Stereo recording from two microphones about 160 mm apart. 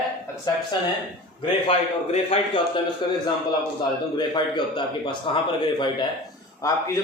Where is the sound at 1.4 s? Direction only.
35° left (ahead or behind).